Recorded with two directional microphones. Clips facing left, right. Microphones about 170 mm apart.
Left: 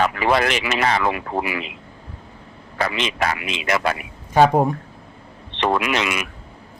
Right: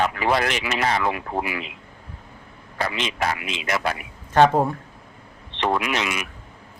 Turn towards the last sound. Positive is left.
turn(degrees=90)